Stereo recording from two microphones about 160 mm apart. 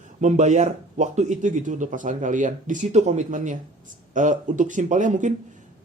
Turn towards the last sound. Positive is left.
turn(degrees=-50)  # may be behind; listen again after turning